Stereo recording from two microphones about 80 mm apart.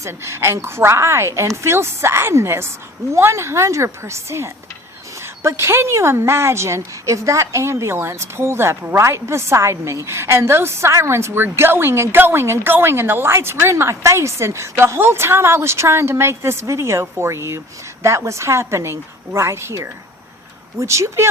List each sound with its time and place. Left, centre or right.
0.0 s a woman's voice: right